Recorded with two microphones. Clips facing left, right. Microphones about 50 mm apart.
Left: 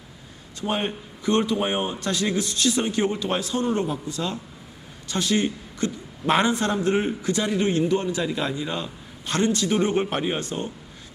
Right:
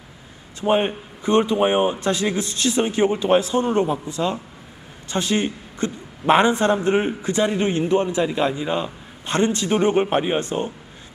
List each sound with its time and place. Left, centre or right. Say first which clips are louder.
0.7 s a man's voice: right 8 dB; right